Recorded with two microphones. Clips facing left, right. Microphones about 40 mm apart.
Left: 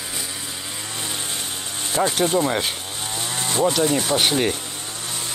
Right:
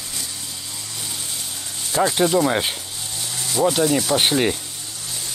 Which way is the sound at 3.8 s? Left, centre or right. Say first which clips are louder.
Right 1 dB; left.